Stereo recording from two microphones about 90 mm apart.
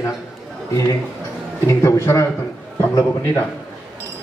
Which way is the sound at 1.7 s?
35° left (ahead or behind).